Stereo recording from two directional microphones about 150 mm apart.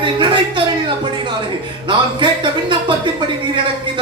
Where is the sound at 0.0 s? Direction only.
35° right (ahead or behind).